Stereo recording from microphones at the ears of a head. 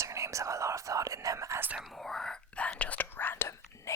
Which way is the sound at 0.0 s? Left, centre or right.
Right.